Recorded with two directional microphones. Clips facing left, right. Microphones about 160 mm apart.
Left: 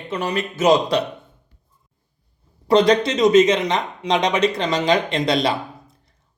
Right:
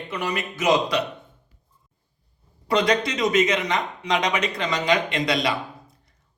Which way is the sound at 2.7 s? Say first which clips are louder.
Left 6 dB; 25° left (ahead or behind).